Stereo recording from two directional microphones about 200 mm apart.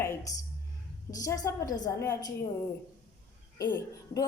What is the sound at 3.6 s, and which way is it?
Speech, 15° left (ahead or behind).